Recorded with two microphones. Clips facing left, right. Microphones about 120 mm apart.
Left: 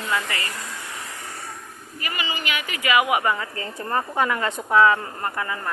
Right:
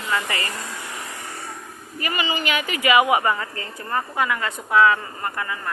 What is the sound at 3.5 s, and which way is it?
A woman's voice, 25° left (ahead or behind).